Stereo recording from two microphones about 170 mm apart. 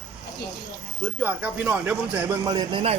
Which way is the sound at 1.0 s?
10° right (ahead or behind).